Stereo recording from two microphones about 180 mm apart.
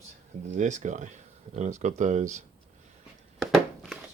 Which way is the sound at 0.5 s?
40° right (ahead or behind).